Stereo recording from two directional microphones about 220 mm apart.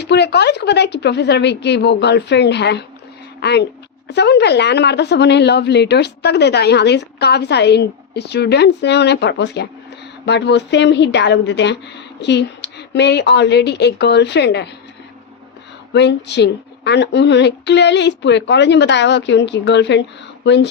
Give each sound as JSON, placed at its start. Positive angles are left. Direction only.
{"t": 0.0, "sound": "a woman's voice", "side_deg": 50}
{"t": 15.9, "sound": "a woman's voice", "side_deg": 50}